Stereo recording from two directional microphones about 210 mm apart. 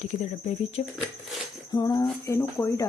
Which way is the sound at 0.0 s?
35° left (ahead or behind).